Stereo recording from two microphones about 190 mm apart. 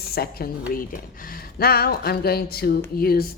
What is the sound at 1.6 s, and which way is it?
Speech, 55° left (ahead or behind).